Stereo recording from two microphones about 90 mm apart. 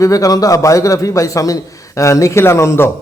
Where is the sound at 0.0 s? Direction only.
40° left (ahead or behind).